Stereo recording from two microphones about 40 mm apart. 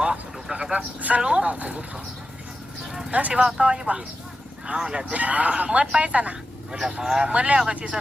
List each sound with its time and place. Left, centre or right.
0.0 s vehicle: centre; by 1.2 s right
1.2 s speech: right
3.1 s speech: right
3.4 s speech: centre
5.1 s speech: right
6.7 s speech: centre
7.3 s speech: right